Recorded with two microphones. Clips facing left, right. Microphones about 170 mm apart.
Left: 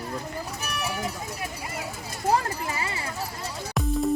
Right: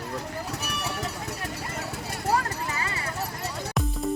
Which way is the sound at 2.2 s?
25° left (ahead or behind).